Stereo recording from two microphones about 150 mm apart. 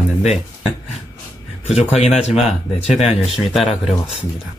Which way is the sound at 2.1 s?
45° left (ahead or behind).